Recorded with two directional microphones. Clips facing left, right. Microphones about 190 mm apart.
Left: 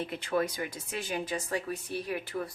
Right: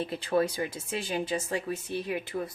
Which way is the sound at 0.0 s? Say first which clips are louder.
Right 3 dB; 30° right (ahead or behind).